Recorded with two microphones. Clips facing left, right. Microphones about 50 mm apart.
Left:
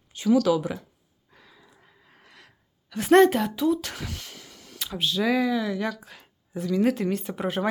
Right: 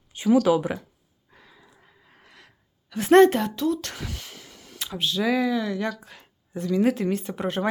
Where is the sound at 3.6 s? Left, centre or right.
Centre.